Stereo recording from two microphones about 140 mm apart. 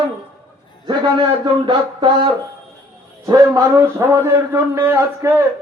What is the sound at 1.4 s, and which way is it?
Speech, 35° right (ahead or behind).